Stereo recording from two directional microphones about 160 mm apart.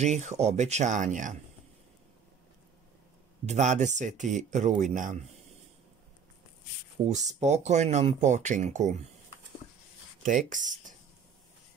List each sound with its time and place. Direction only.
0.0 s speech: 45° right (ahead or behind)
3.4 s speech: 45° right (ahead or behind)
7.1 s speech: 45° right (ahead or behind)
10.2 s speech: 55° right (ahead or behind)